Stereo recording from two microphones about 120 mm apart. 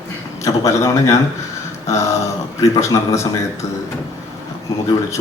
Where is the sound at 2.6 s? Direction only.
25° left (ahead or behind).